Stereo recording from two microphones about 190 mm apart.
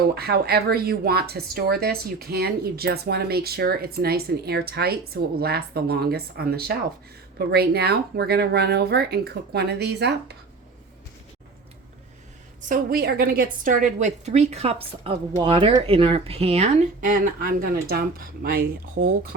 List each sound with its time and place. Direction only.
0.1 s a woman's voice: 55° right (ahead or behind)
12.6 s a woman's voice: 45° right (ahead or behind)